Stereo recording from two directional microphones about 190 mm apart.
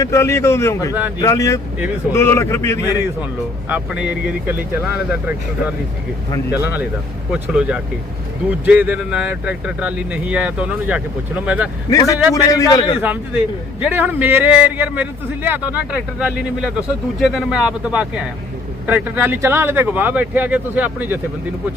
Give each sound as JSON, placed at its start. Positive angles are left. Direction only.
{"t": 0.0, "sound": "a man's voice", "side_deg": 15}
{"t": 2.8, "sound": "speech", "side_deg": -10}
{"t": 11.9, "sound": "a man's voice", "side_deg": 20}
{"t": 13.8, "sound": "speech", "side_deg": -10}